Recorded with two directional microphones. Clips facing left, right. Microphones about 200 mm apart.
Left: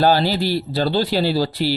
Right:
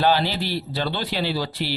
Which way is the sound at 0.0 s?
40° left (ahead or behind).